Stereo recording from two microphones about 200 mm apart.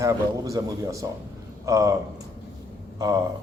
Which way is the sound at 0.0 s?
15° right (ahead or behind).